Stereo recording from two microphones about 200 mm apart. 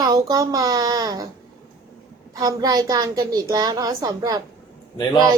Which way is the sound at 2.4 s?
15° right (ahead or behind).